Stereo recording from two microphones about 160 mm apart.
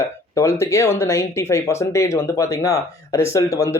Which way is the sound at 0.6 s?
20° left (ahead or behind).